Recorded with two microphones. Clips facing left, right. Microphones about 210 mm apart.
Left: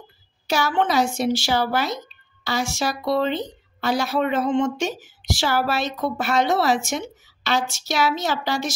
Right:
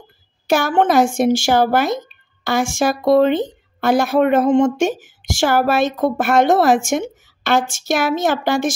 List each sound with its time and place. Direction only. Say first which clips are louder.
0.5 s speech: right 6 dB; 50° right (ahead or behind)